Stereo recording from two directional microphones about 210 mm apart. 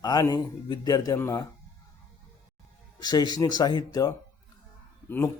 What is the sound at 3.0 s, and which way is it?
A man's voice, 20° left (ahead or behind).